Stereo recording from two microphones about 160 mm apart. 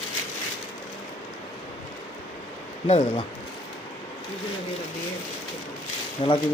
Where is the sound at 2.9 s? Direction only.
35° left (ahead or behind).